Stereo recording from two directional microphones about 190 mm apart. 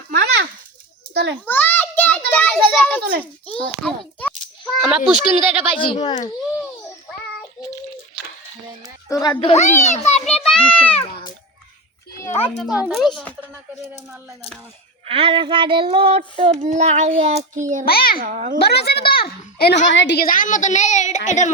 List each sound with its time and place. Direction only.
0.1 s a sound: 55° right (ahead or behind)
1.1 s a child's voice: 65° right (ahead or behind)
1.5 s a sound: 10° left (ahead or behind)
3.4 s a child's voice: 5° left (ahead or behind)
5.7 s speech: 25° left (ahead or behind)
9.0 s a child's voice: 15° left (ahead or behind)
9.4 s a woman's voice: 35° left (ahead or behind)
10.4 s a child's voice: 5° left (ahead or behind)
12.5 s a child's voice: 5° right (ahead or behind)
15.0 s a child's voice: 30° right (ahead or behind)
17.8 s a child's voice: 55° left (ahead or behind)
18.3 s a child's voice: 45° right (ahead or behind)
18.6 s a child's voice: 55° left (ahead or behind)
19.9 s a woman's voice: 70° left (ahead or behind); by 21.5 s 40° left (ahead or behind)